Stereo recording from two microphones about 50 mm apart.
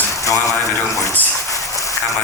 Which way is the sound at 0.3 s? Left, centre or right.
Left.